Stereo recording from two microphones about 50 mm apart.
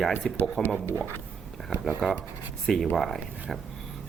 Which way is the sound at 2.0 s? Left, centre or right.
Centre.